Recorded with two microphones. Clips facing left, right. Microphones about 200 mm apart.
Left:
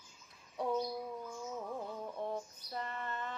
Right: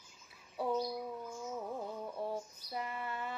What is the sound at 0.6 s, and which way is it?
Bird, 5° right (ahead or behind).